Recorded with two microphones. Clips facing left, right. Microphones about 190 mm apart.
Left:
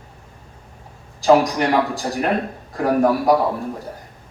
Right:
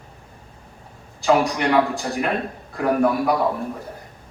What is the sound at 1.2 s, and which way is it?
A man's voice, 35° left (ahead or behind).